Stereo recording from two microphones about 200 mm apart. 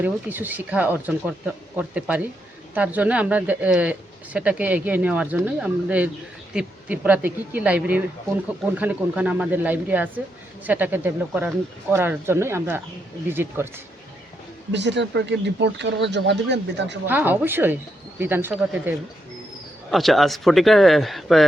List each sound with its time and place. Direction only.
0.0 s speech: 10° right (ahead or behind)
14.7 s speech: 60° right (ahead or behind)
17.1 s speech: 10° right (ahead or behind)